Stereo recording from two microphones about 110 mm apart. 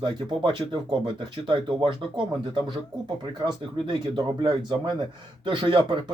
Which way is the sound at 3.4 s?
45° right (ahead or behind).